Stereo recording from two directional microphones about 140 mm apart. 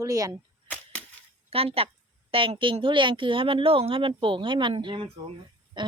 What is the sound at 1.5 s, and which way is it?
Speech, 45° right (ahead or behind).